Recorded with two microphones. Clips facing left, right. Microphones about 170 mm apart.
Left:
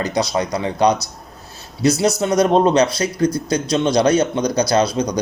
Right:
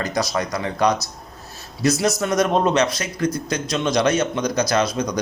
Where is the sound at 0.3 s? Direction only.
30° left (ahead or behind).